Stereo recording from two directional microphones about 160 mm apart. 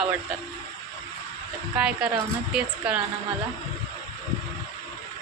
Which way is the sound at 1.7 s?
5° right (ahead or behind).